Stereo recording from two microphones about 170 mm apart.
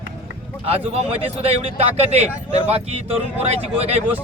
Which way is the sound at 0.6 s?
35° right (ahead or behind).